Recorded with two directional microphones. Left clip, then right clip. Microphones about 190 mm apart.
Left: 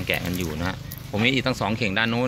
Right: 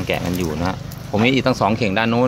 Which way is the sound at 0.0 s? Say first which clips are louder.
Right 4 dB; 5° right (ahead or behind).